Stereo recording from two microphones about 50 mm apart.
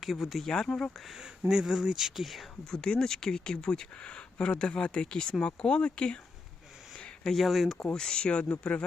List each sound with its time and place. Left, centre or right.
0.0 s speech: centre
0.9 s speech: centre
1.2 s speech: centre
2.6 s speech: centre
7.3 s speech: centre
7.9 s speech: centre